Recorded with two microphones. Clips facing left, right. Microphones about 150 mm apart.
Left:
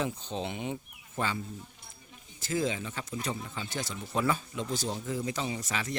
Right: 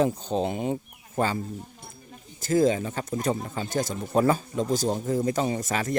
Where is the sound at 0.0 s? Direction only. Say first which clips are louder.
Right 9 dB; 40° right (ahead or behind).